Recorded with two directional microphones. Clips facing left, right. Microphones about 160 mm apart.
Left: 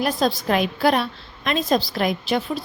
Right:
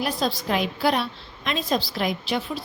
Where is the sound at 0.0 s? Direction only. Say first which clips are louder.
Left 4 dB; 50° left (ahead or behind).